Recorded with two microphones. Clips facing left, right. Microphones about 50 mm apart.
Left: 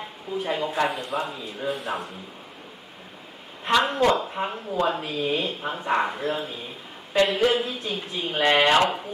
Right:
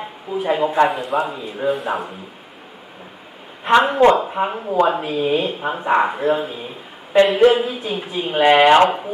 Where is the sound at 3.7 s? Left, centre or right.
Centre.